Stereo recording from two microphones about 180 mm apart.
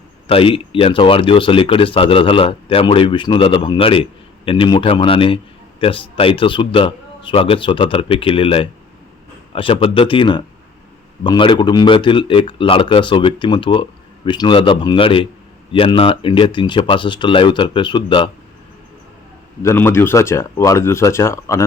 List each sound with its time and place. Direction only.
0.3 s speech: 30° left (ahead or behind)
19.6 s speech: 15° left (ahead or behind)